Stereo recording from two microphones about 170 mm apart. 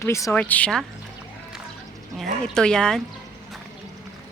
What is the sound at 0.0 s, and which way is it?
Speech, 15° left (ahead or behind).